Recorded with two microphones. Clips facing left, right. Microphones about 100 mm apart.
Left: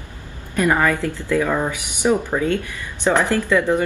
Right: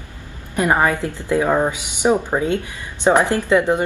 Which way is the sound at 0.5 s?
20° right (ahead or behind).